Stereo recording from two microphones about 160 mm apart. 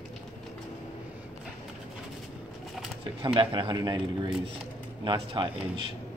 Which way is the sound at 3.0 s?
30° right (ahead or behind).